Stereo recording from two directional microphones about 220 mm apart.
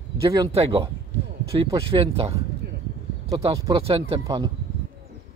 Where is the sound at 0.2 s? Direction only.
15° right (ahead or behind).